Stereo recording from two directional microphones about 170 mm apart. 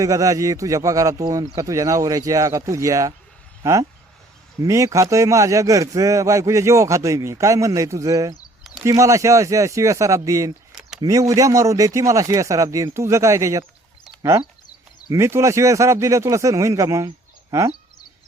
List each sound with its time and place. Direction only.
0.0 s a man's voice: 20° right (ahead or behind)